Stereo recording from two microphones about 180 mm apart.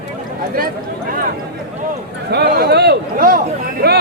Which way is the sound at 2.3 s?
65° right (ahead or behind).